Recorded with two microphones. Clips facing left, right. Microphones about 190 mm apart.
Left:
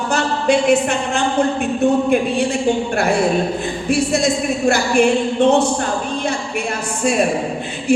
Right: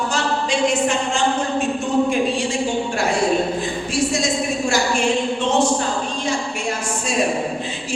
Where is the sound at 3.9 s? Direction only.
60° left (ahead or behind).